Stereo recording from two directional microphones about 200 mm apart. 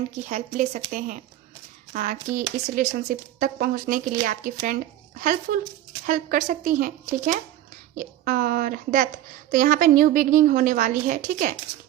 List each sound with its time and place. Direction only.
0.3 s a woman's voice: 35° right (ahead or behind)